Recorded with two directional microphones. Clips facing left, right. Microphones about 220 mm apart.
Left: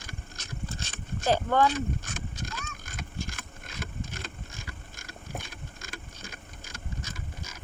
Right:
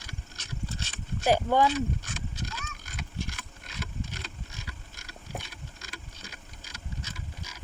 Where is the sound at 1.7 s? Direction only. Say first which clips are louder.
Right 1 dB; 50° left (ahead or behind).